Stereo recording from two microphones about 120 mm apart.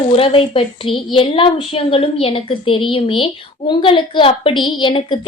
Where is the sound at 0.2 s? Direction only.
50° left (ahead or behind).